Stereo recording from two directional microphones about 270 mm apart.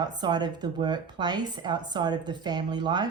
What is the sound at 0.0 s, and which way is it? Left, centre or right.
A woman's voice, centre.